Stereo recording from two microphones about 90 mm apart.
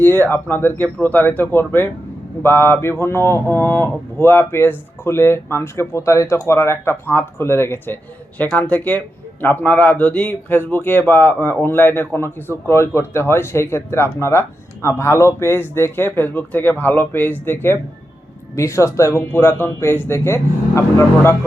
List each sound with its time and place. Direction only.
0.0 s speech: 25° left (ahead or behind)
8.5 s speech: 15° left (ahead or behind)